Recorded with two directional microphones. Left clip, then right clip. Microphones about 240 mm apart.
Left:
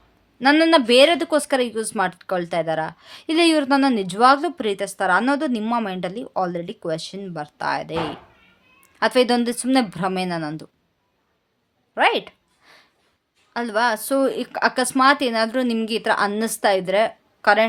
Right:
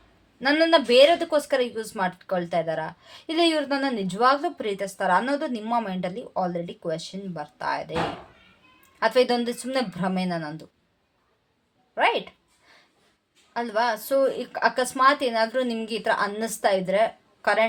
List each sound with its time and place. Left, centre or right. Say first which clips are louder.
0.3 s a woman's voice: left 4 dB; left
9.0 s a woman's voice: left 3 dB; left
11.9 s a sound: left 4 dB; left
13.5 s a woman's voice: left 4 dB; left